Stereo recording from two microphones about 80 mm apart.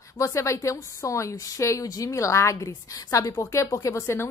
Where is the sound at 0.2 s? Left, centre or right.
Left.